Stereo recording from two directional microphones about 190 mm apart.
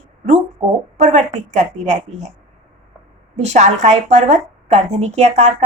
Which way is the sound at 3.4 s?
35° right (ahead or behind).